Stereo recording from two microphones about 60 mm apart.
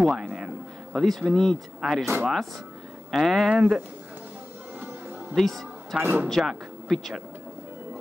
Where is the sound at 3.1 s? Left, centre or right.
Centre.